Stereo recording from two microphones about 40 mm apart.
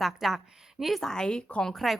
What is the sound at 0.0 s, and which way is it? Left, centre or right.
Speech, centre.